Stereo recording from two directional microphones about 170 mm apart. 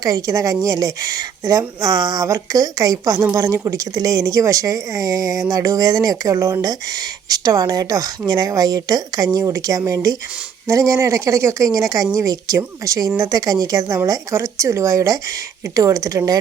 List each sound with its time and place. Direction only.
0.0 s speech: 20° right (ahead or behind)